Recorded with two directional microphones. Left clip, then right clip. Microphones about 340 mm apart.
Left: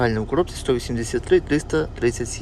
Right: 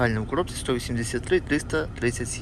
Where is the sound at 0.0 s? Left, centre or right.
Centre.